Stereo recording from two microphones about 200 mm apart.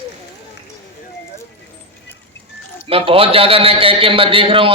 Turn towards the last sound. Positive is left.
turn(degrees=-25)  # may be behind; listen again after turning